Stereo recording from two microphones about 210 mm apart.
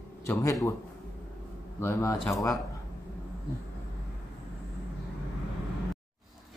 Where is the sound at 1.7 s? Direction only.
10° left (ahead or behind).